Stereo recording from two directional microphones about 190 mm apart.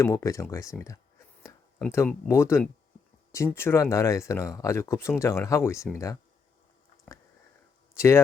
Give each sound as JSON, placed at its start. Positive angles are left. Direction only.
{"t": 0.0, "sound": "speech", "side_deg": 15}
{"t": 7.9, "sound": "speech", "side_deg": 15}